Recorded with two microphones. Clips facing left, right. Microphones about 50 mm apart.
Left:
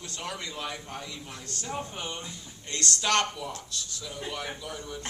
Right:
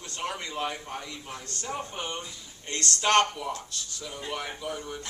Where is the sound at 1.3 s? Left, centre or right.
Right.